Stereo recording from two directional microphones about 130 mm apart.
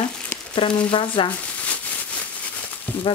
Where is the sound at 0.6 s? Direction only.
40° left (ahead or behind).